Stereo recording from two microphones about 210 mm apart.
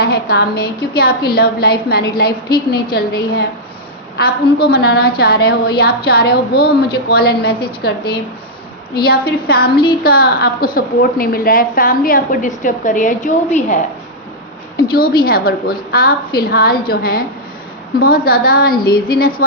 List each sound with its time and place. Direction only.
0.0 s a woman's voice: 45° left (ahead or behind)
4.2 s a woman's voice: 50° left (ahead or behind)
14.8 s a woman's voice: 45° left (ahead or behind)